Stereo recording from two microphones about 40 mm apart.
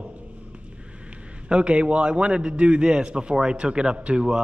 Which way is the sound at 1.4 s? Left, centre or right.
Right.